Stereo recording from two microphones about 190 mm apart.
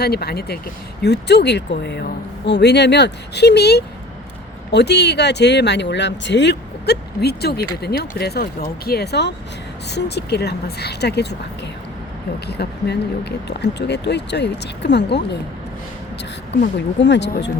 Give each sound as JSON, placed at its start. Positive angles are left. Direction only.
{"t": 0.0, "sound": "speech", "side_deg": 55}
{"t": 12.5, "sound": "speech", "side_deg": 60}
{"t": 17.0, "sound": "speech", "side_deg": 65}